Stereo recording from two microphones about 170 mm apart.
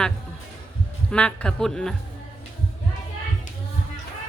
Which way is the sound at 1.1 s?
5° left (ahead or behind).